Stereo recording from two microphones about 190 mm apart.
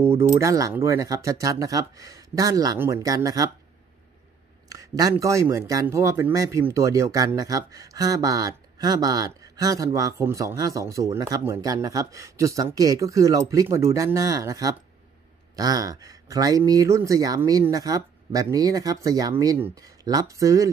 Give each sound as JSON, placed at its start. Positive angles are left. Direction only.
{"t": 0.1, "sound": "speech", "side_deg": -30}
{"t": 0.4, "sound": "speech", "side_deg": -15}
{"t": 4.6, "sound": "speech", "side_deg": -20}